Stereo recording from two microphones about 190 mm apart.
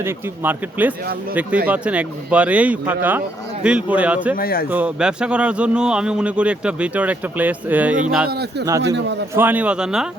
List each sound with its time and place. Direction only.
0.0 s a man's voice: 10° right (ahead or behind)
4.4 s speech: 50° left (ahead or behind)
4.7 s a man's voice: 5° right (ahead or behind)
8.3 s a man's voice: 60° right (ahead or behind)
9.3 s speech: 10° right (ahead or behind)